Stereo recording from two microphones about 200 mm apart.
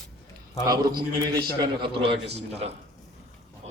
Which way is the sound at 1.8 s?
25° right (ahead or behind).